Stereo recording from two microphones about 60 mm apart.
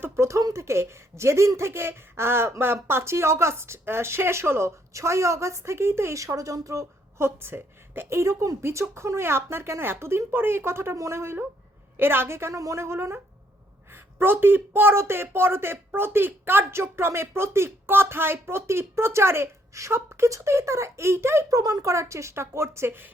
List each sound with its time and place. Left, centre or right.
0.3 s speech: right
6.1 s speech: right
7.2 s a woman's voice: right
8.2 s speech: right
10.9 s speech: right
21.5 s speech: right